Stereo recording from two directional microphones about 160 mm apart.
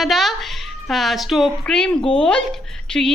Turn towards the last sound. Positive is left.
turn(degrees=5)  # may be behind; listen again after turning